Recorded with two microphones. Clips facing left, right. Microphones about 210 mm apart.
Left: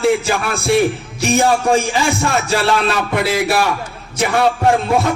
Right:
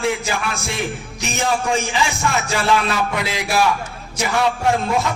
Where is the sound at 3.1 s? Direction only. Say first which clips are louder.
Left 7 dB; 55° left (ahead or behind).